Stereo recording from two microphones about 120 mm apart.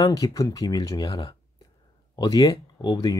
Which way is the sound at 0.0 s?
30° left (ahead or behind).